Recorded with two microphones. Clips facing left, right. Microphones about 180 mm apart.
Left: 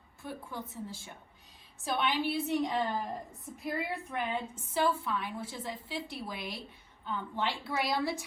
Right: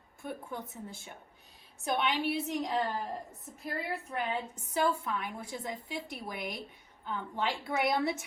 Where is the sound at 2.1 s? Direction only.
Centre (ahead or behind).